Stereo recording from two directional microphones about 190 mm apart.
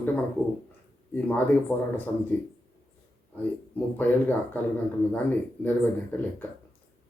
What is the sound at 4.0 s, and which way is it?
Speech, 10° left (ahead or behind).